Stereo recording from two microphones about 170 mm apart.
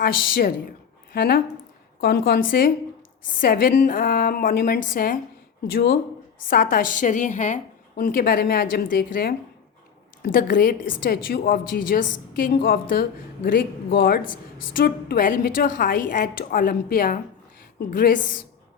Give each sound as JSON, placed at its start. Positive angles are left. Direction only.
{"t": 0.0, "sound": "a woman's voice", "side_deg": 60}